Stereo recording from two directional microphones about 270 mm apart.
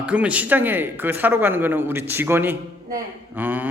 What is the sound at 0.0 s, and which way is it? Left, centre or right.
A man's voice, centre.